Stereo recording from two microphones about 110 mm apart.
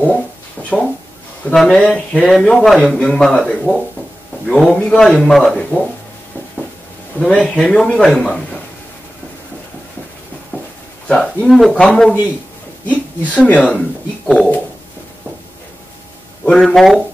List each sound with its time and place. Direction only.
0.6 s a sound: 15° left (ahead or behind)
1.5 s speech: 5° left (ahead or behind)
7.2 s speech: 10° left (ahead or behind)
10.5 s a sound: 15° right (ahead or behind)
11.1 s a woman's voice: 5° left (ahead or behind)
16.4 s speech: 5° left (ahead or behind)